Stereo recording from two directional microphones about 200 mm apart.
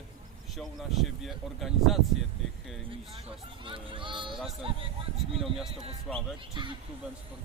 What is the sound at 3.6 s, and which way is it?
Speech, 25° right (ahead or behind).